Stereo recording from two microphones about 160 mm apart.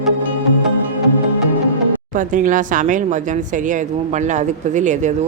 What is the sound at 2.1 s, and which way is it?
A woman's voice, 55° right (ahead or behind).